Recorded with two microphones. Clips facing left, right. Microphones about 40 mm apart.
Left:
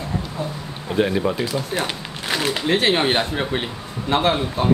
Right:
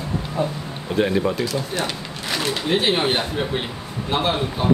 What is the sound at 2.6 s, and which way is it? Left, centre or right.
A man's voice, left.